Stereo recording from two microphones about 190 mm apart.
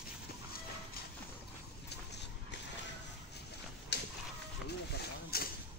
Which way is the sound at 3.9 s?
60° left (ahead or behind).